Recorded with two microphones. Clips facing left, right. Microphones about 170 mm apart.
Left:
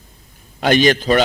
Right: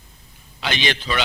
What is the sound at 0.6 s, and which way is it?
Speech, 45° left (ahead or behind).